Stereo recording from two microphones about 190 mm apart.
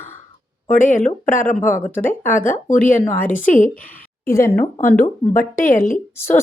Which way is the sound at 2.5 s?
45° left (ahead or behind).